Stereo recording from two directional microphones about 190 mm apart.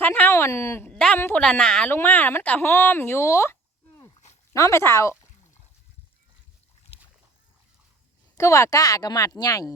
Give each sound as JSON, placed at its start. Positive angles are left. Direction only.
{"t": 0.0, "sound": "speech", "side_deg": 10}
{"t": 8.4, "sound": "speech", "side_deg": 15}